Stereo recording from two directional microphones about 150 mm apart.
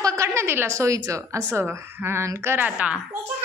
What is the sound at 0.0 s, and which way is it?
A woman's voice, 20° right (ahead or behind).